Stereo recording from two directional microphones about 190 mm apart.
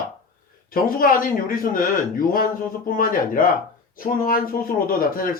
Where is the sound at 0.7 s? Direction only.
50° left (ahead or behind).